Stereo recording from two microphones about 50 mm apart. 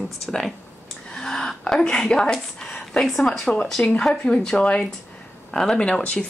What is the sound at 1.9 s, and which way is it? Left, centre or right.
A woman's voice, centre.